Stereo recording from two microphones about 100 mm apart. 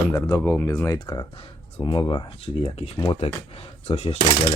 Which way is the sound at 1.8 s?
50° left (ahead or behind).